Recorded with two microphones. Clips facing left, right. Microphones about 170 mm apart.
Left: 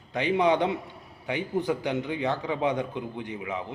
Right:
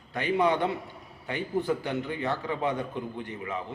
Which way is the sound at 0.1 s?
20° left (ahead or behind).